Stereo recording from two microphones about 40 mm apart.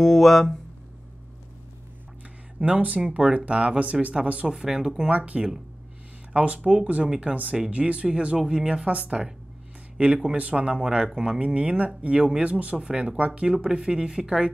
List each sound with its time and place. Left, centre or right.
0.0 s speech: centre
2.6 s speech: right
3.0 s speech: right
4.5 s speech: centre
12.8 s speech: centre